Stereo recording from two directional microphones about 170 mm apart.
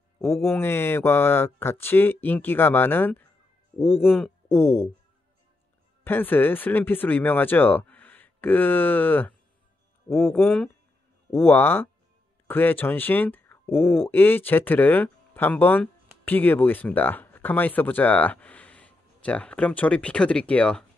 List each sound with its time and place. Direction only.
0.2 s speech: 15° left (ahead or behind)
4.0 s speech: centre (ahead or behind)
4.5 s speech: 15° left (ahead or behind)
6.0 s speech: 10° left (ahead or behind)